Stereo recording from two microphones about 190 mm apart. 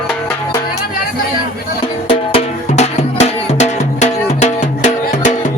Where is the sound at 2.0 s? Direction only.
30° left (ahead or behind).